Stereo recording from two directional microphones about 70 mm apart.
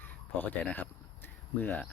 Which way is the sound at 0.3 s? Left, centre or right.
Left.